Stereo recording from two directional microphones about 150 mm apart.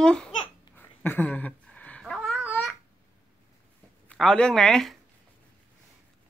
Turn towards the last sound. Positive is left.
turn(degrees=0)  # may be behind; listen again after turning